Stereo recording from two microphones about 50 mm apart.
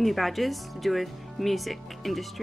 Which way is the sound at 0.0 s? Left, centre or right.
Centre.